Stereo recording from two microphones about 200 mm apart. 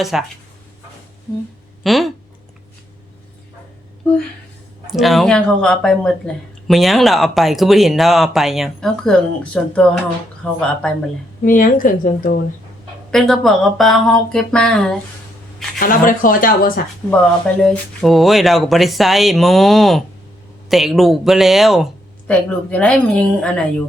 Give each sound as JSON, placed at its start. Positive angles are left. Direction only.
{"t": 0.0, "sound": "speech", "side_deg": 0}
{"t": 1.8, "sound": "a sound", "side_deg": 0}
{"t": 4.9, "sound": "speech", "side_deg": 0}
{"t": 11.4, "sound": "speech", "side_deg": 45}
{"t": 13.1, "sound": "speech", "side_deg": 0}
{"t": 15.8, "sound": "speech", "side_deg": 45}
{"t": 17.6, "sound": "speech", "side_deg": 0}